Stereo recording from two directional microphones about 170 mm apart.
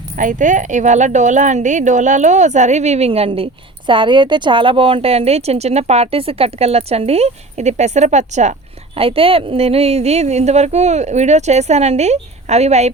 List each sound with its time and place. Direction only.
0.2 s speech: 50° right (ahead or behind)
9.0 s speech: 35° right (ahead or behind)